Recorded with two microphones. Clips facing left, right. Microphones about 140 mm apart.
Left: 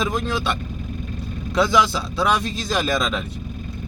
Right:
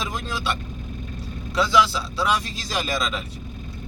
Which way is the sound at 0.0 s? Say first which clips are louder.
Left 5 dB; 55° left (ahead or behind).